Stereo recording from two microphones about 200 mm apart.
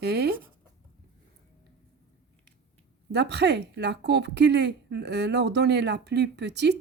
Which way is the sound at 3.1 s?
55° right (ahead or behind).